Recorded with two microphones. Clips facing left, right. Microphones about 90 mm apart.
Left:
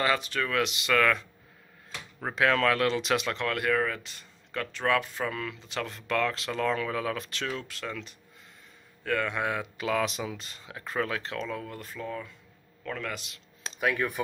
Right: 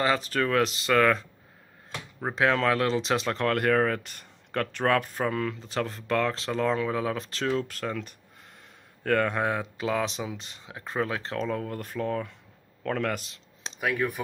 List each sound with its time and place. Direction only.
0.0 s speech: 35° right (ahead or behind)
2.2 s a man's voice: 25° right (ahead or behind); by 13.2 s 55° right (ahead or behind)
13.7 s speech: 5° right (ahead or behind)